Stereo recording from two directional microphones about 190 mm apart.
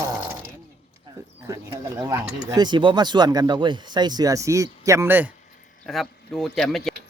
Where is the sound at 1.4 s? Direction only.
15° right (ahead or behind).